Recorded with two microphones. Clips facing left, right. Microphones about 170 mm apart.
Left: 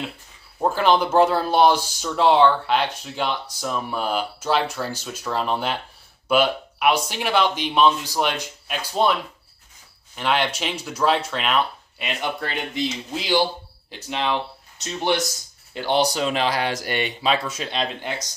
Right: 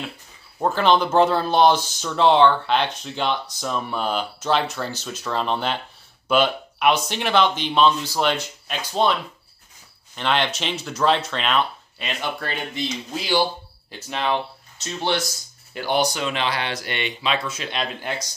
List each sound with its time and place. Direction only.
0.6 s speech: 10° left (ahead or behind)
10.1 s speech: 10° left (ahead or behind)
13.9 s speech: 15° left (ahead or behind); by 17.8 s 35° left (ahead or behind)